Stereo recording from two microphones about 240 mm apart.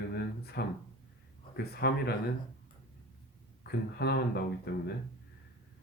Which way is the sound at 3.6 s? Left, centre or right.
Left.